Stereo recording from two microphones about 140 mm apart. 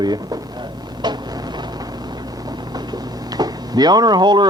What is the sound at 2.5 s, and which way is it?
Speech, 30° right (ahead or behind).